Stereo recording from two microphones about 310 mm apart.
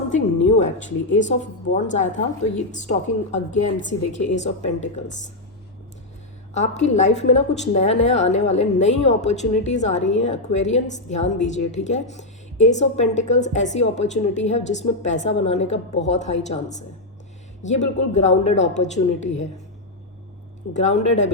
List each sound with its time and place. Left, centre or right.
0.1 s music: left
1.1 s a woman's voice: left
6.5 s a woman's voice: left
20.7 s a woman's voice: left